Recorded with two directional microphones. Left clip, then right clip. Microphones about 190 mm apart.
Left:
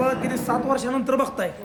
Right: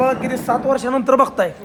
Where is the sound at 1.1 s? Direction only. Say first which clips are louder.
Right 10 dB; 25° right (ahead or behind).